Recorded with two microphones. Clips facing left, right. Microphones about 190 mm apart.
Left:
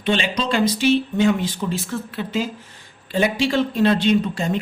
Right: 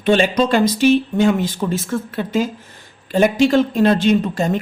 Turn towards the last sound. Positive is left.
turn(degrees=-50)  # may be behind; listen again after turning